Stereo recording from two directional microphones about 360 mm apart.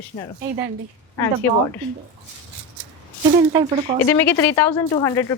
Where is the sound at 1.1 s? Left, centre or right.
Centre.